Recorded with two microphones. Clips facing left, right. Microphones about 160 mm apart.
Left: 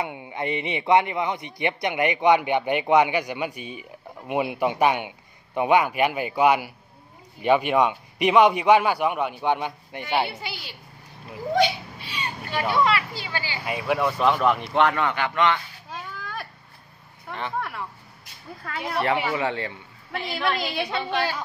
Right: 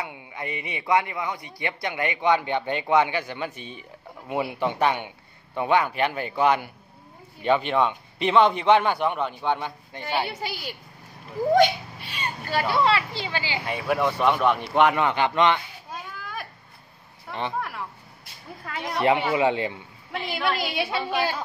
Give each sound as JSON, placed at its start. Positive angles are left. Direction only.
{"t": 0.0, "sound": "a man's voice", "side_deg": 25}
{"t": 10.4, "sound": "a woman's voice", "side_deg": -45}
{"t": 11.5, "sound": "a sound", "side_deg": -50}
{"t": 12.8, "sound": "speech", "side_deg": -25}
{"t": 13.7, "sound": "speech", "side_deg": 0}
{"t": 14.7, "sound": "speech", "side_deg": -10}
{"t": 17.3, "sound": "speech", "side_deg": -20}
{"t": 17.6, "sound": "speech", "side_deg": 0}
{"t": 18.6, "sound": "speech", "side_deg": -15}
{"t": 20.1, "sound": "speech", "side_deg": -5}